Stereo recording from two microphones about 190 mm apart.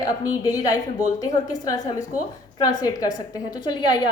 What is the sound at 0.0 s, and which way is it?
A woman's voice, 20° left (ahead or behind).